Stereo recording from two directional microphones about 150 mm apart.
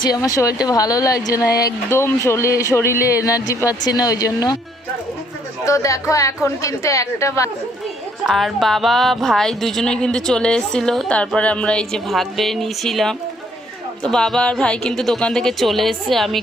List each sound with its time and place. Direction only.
0.0 s speech: 25° left (ahead or behind)
5.6 s speech: 20° left (ahead or behind)
8.3 s music: centre (ahead or behind)